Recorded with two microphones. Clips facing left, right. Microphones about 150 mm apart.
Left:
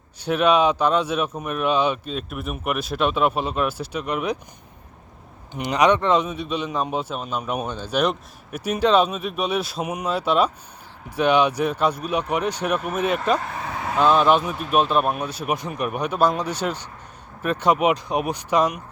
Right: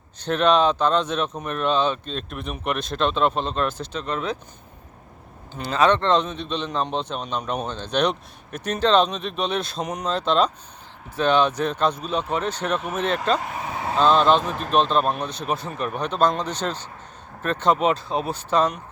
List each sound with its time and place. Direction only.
0.2 s speech: 10° left (ahead or behind)
5.5 s speech: 15° left (ahead or behind)
13.4 s vehicle: 15° right (ahead or behind)
14.0 s speech: 10° left (ahead or behind)